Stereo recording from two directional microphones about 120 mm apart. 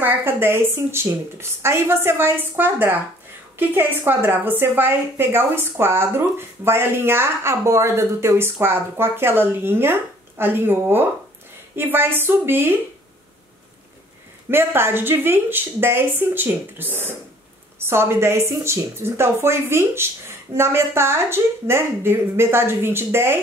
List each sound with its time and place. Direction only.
0.0 s a woman's voice: 20° right (ahead or behind)
14.5 s a woman's voice: 20° right (ahead or behind)